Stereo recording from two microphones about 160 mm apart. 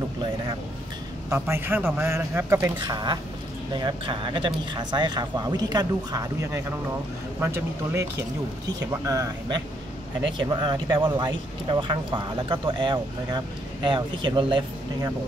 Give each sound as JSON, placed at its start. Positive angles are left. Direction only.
{"t": 1.3, "sound": "a man's voice", "side_deg": -15}
{"t": 2.8, "sound": "a man's voice", "side_deg": -25}